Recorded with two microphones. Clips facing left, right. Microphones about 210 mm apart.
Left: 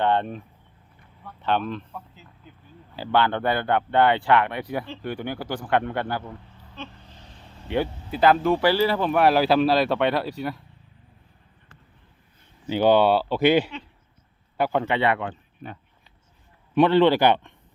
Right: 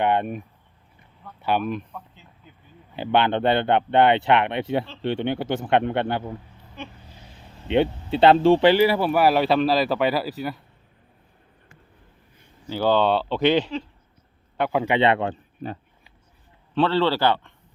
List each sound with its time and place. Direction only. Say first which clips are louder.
0.0 s speech: right 1 dB; 15° right (ahead or behind)
1.9 s a sound: even; 5° left (ahead or behind)
2.9 s speech: right 2 dB; 20° right (ahead or behind)
6.7 s vehicle: right 1 dB; 10° right (ahead or behind)
7.7 s speech: right 5 dB; 25° right (ahead or behind); by 10.6 s centre (ahead or behind)
12.6 s speech: left 2 dB; 20° left (ahead or behind)
14.6 s speech: even; 5° right (ahead or behind)
14.8 s speech: right 3 dB; 20° right (ahead or behind)
15.2 s speech: right 5 dB; 35° right (ahead or behind)
16.7 s speech: left 4 dB; 15° left (ahead or behind)